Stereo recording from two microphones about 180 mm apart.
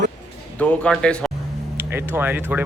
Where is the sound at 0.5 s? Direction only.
5° left (ahead or behind).